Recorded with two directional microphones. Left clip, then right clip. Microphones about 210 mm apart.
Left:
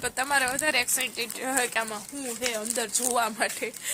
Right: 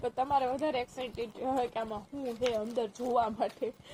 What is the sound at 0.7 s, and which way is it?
Speech, 5° left (ahead or behind).